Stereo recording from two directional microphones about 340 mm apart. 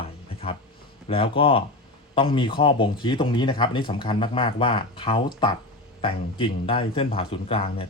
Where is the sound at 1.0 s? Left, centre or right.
Centre.